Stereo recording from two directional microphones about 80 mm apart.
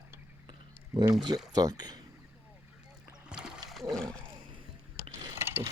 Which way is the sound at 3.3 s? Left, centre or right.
Centre.